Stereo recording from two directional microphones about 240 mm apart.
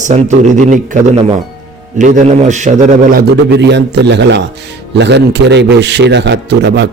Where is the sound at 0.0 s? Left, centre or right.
Right.